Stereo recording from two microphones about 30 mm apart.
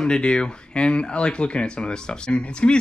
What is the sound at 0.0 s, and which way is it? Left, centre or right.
Speech, left.